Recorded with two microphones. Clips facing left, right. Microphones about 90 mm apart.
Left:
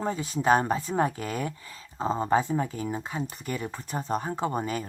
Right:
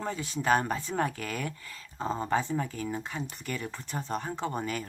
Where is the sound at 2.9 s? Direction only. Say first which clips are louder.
Left 3 dB; 10° left (ahead or behind).